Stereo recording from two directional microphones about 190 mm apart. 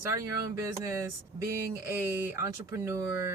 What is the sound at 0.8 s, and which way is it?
Speech, 15° right (ahead or behind).